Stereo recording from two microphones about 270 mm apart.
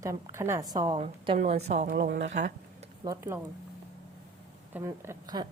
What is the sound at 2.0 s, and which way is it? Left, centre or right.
Speech, right.